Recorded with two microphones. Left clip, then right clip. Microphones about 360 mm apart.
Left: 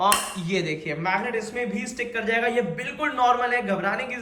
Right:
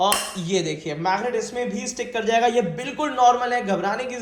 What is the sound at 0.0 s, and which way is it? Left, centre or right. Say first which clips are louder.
Speech: even; centre.